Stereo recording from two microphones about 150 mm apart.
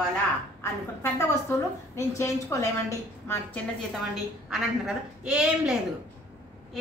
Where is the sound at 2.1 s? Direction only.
20° left (ahead or behind).